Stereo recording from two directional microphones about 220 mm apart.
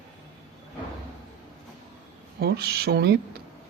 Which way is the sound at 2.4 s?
45° right (ahead or behind).